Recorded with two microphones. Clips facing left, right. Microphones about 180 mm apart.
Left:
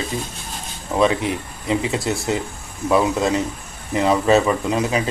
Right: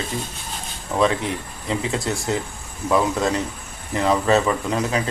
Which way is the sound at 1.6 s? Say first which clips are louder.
Left 3 dB; 15° left (ahead or behind).